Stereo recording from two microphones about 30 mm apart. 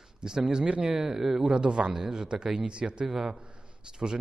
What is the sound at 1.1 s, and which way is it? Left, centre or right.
Speech, centre.